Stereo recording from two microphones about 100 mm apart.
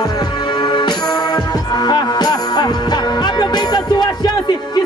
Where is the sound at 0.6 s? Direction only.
50° left (ahead or behind).